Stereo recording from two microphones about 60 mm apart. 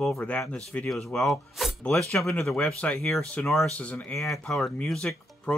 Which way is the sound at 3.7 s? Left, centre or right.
Left.